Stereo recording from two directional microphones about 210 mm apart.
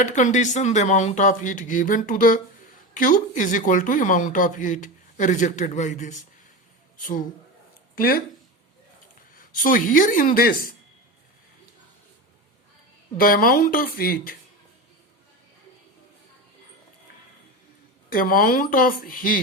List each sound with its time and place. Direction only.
0.0 s speech: 35° left (ahead or behind)
9.3 s speech: 40° left (ahead or behind)
13.1 s speech: 40° left (ahead or behind)
18.1 s speech: 40° left (ahead or behind)